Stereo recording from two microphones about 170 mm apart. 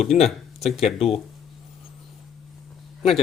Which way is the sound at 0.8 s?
35° left (ahead or behind).